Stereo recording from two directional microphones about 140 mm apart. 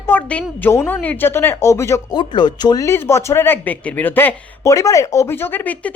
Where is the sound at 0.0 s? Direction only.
15° left (ahead or behind).